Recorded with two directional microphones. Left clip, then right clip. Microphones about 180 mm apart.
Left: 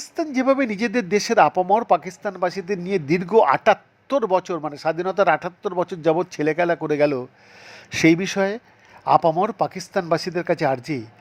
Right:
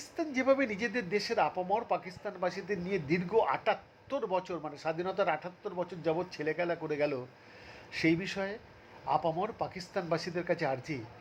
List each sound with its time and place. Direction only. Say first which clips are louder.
0.2 s speech: left 9 dB; 30° left (ahead or behind)